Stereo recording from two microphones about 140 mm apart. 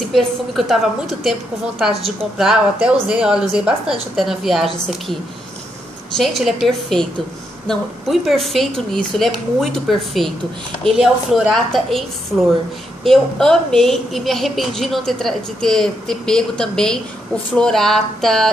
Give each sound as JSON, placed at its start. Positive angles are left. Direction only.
{"t": 0.1, "sound": "a woman's voice", "side_deg": 0}
{"t": 6.1, "sound": "a woman's voice", "side_deg": 0}